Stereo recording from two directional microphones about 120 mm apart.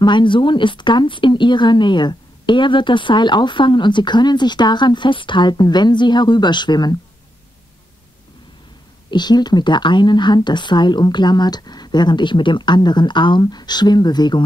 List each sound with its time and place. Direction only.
0.0 s a woman's voice: 40° left (ahead or behind)
9.1 s a woman's voice: 35° left (ahead or behind)